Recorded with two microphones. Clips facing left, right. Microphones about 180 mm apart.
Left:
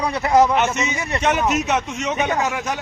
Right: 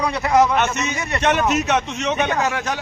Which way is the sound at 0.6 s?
10° left (ahead or behind).